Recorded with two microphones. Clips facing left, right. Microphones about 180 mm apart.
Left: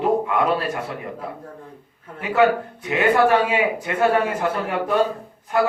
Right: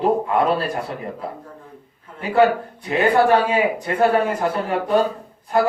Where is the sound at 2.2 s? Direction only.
35° right (ahead or behind).